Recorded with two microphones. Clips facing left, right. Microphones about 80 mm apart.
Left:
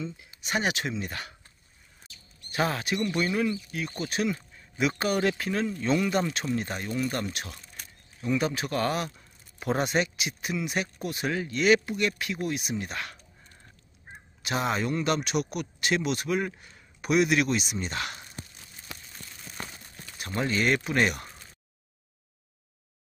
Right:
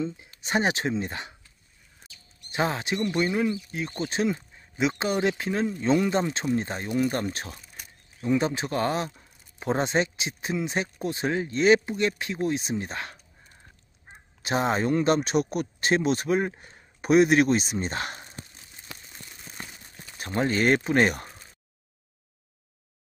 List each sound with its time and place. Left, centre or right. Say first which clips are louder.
0.4 s speech: right 3 dB; right
2.5 s speech: right 1 dB; right
14.4 s speech: right 3 dB; right
20.2 s speech: right 3 dB; right